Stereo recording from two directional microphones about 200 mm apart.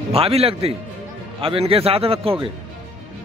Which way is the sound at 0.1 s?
30° right (ahead or behind).